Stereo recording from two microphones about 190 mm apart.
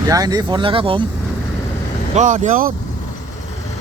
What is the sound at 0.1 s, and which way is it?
Speech, 20° right (ahead or behind).